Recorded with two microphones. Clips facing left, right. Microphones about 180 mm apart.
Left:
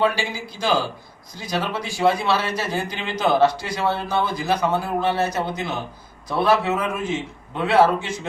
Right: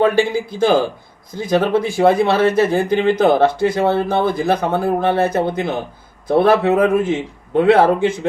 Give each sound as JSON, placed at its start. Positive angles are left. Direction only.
{"t": 0.0, "sound": "a man's voice", "side_deg": -55}